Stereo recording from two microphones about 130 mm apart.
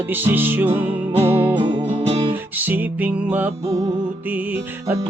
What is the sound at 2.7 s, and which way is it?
Music, 10° right (ahead or behind).